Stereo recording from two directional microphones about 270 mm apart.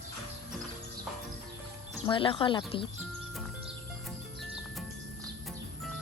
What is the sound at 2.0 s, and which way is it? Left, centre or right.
Speech, centre.